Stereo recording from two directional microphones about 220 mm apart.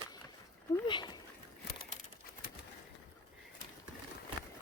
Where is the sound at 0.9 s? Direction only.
20° left (ahead or behind).